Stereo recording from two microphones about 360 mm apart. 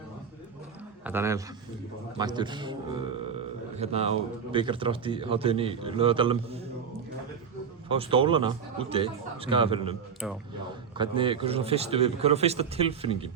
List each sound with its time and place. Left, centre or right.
1.0 s speech: centre
2.1 s a sound: centre
4.5 s speech: centre
7.9 s speech: centre
10.2 s speech: centre
10.9 s speech: centre